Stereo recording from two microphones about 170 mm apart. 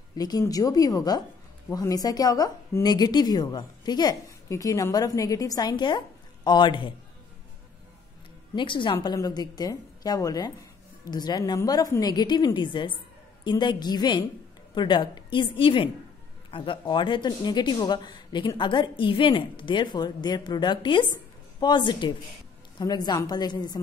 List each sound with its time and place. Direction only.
0.1 s a woman's voice: 25° left (ahead or behind)
8.5 s a woman's voice: 30° left (ahead or behind)